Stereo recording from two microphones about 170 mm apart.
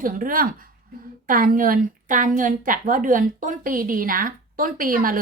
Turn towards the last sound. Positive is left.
turn(degrees=-55)  # may be behind; listen again after turning